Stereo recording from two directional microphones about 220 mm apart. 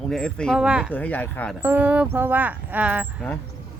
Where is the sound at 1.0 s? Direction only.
10° left (ahead or behind).